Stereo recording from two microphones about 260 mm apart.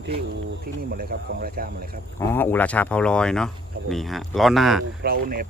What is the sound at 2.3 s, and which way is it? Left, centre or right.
Speech, centre.